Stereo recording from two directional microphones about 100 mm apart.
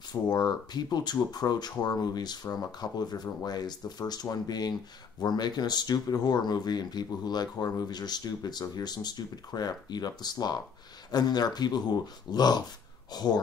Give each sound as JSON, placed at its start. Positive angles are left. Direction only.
{"t": 0.1, "sound": "speech", "side_deg": 45}